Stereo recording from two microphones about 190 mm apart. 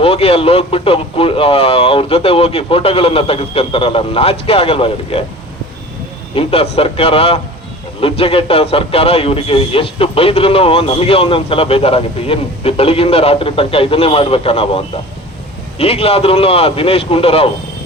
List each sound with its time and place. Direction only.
0.0 s a man's voice: 30° left (ahead or behind)
6.3 s a man's voice: 30° left (ahead or behind)